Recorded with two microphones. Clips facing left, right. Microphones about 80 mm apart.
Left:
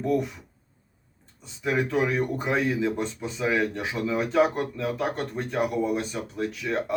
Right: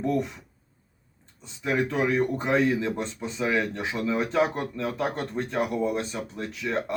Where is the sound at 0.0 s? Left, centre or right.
Centre.